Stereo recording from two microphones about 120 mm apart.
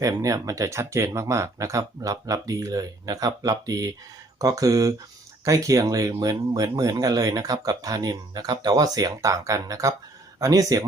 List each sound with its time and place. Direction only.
0.0 s speech: 30° right (ahead or behind)